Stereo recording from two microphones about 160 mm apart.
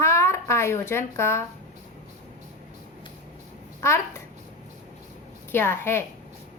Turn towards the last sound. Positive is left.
turn(degrees=15)  # may be behind; listen again after turning